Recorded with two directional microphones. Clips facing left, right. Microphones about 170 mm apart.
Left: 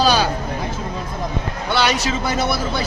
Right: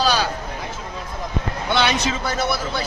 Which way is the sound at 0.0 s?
15° left (ahead or behind).